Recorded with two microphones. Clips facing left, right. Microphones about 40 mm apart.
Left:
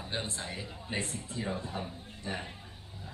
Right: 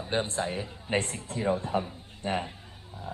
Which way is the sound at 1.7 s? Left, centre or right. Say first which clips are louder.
Right 9 dB; right.